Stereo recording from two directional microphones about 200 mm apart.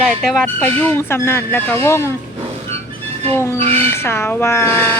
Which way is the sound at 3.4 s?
15° left (ahead or behind).